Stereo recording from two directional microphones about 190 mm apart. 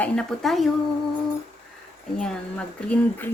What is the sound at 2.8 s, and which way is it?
Speech, 5° left (ahead or behind).